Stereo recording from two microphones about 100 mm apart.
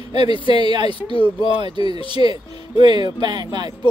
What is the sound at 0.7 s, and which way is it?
Speech, 50° right (ahead or behind).